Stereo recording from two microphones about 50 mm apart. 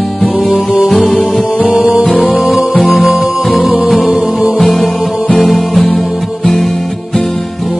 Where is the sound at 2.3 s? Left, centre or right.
Centre.